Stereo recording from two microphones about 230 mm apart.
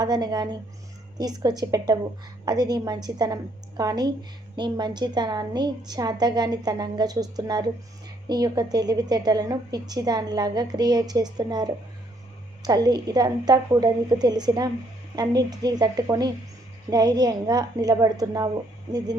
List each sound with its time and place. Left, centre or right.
0.0 s a woman's voice: centre